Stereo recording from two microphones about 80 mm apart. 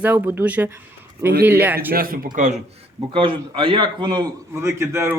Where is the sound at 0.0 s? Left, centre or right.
Right.